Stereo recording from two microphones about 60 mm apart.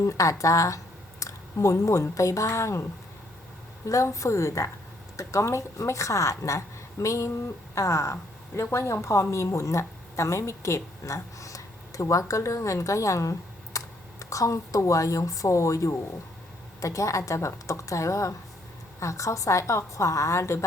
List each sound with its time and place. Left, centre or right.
0.0 s a woman's voice: left
3.8 s a woman's voice: left